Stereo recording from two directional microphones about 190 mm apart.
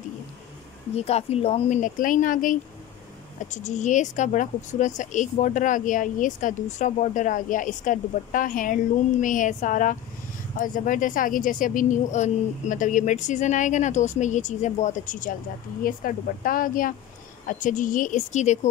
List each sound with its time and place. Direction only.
0.9 s a woman's voice: 35° left (ahead or behind)